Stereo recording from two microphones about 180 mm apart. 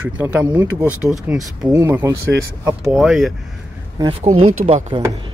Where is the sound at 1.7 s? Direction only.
15° right (ahead or behind).